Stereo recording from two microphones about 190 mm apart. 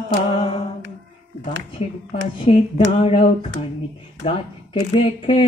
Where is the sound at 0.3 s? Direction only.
30° left (ahead or behind).